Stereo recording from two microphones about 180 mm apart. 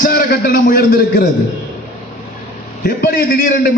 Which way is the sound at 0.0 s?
55° left (ahead or behind).